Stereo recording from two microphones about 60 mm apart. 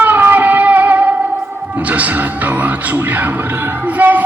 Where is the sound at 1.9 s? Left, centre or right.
Right.